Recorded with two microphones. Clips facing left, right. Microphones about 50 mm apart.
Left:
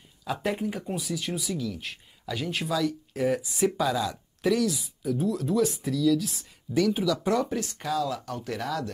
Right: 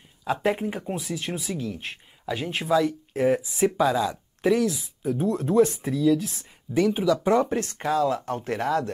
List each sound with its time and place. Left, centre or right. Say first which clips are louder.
0.2 s speech: right 4 dB; right